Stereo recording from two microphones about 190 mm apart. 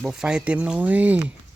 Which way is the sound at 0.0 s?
5° right (ahead or behind).